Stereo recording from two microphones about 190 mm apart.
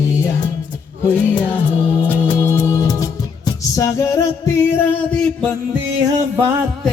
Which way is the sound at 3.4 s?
15° left (ahead or behind).